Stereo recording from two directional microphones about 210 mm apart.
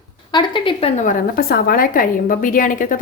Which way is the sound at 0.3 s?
20° left (ahead or behind).